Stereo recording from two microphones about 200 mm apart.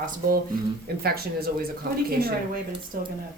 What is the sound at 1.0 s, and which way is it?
Speech, 50° right (ahead or behind).